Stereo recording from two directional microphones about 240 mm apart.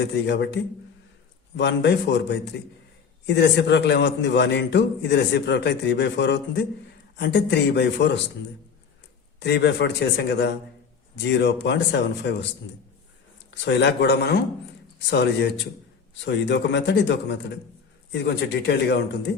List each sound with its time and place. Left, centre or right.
0.0 s a man's voice: left
9.4 s a man's voice: left
13.5 s a man's voice: left